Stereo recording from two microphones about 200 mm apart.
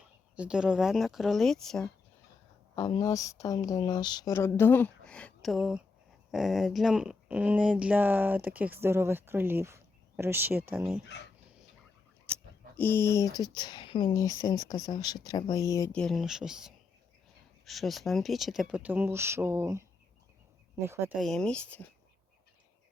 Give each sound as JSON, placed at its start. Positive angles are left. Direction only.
{"t": 0.3, "sound": "speech", "side_deg": -5}
{"t": 2.7, "sound": "speech", "side_deg": 15}
{"t": 12.3, "sound": "speech", "side_deg": 10}
{"t": 16.0, "sound": "speech", "side_deg": 0}
{"t": 20.8, "sound": "speech", "side_deg": -10}
{"t": 21.2, "sound": "speech", "side_deg": 0}